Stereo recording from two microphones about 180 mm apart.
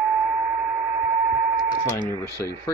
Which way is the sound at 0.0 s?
5° right (ahead or behind).